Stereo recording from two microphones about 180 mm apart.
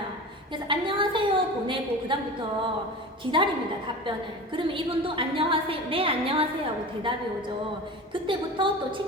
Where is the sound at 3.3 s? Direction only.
25° right (ahead or behind).